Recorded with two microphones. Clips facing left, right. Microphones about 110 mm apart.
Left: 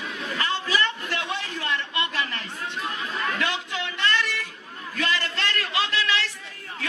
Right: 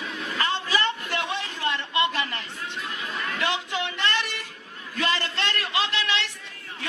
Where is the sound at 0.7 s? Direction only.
25° right (ahead or behind).